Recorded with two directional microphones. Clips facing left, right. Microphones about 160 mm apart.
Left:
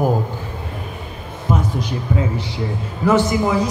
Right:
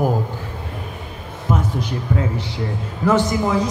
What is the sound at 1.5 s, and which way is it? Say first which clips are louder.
Speech: left 1 dB; 15° left (ahead or behind).